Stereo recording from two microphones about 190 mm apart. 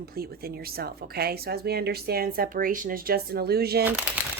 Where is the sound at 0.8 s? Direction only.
55° right (ahead or behind).